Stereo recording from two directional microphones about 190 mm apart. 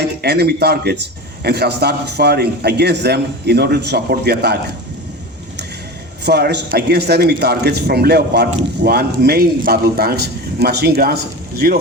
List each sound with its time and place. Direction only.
0.0 s a man's voice: 60° right (ahead or behind)
6.2 s speech: 60° right (ahead or behind)